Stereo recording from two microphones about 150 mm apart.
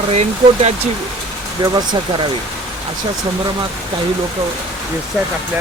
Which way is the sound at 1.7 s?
30° right (ahead or behind).